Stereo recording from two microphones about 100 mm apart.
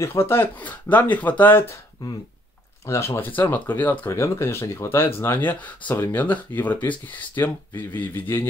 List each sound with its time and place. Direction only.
0.0 s speech: 25° left (ahead or behind)
2.8 s speech: 30° left (ahead or behind)
3.2 s speech: 20° left (ahead or behind)